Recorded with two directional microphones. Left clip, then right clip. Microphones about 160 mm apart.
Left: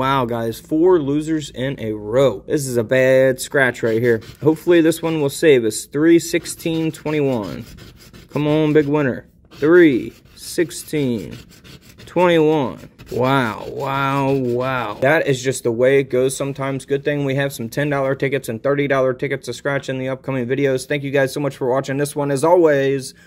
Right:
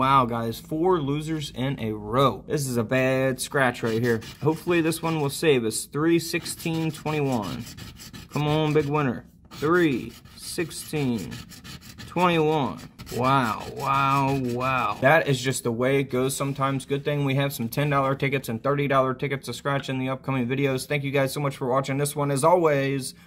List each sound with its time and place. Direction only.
0.0 s speech: 30° left (ahead or behind); by 2.3 s 10° left (ahead or behind)
2.5 s speech: 30° left (ahead or behind)